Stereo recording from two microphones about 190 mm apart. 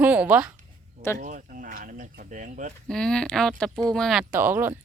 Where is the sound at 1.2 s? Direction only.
40° right (ahead or behind).